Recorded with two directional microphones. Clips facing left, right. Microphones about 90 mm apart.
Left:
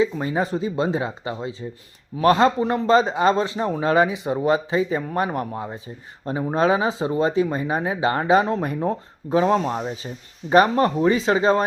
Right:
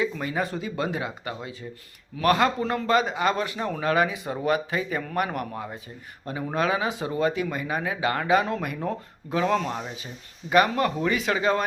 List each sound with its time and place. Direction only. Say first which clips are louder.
0.0 s speech: left 5 dB; 25° left (ahead or behind)